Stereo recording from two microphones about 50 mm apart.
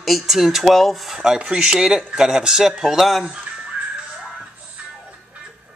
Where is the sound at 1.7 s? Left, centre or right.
Centre.